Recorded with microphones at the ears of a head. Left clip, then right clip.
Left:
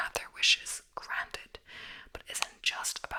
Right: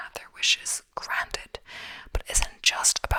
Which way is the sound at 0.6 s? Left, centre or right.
Right.